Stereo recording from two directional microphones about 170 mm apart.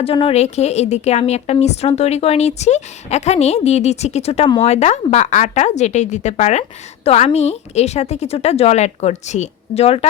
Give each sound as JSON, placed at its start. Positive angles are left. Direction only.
{"t": 0.0, "sound": "a woman's voice", "side_deg": 35}